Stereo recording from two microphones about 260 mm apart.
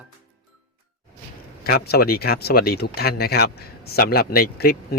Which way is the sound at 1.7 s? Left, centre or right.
Left.